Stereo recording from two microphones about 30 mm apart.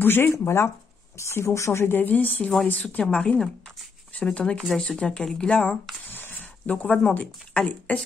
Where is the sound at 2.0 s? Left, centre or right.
Left.